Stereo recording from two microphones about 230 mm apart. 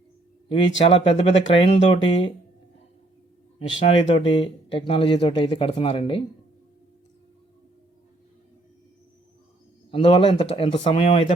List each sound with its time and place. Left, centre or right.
0.4 s speech: left
3.7 s speech: left
9.9 s speech: left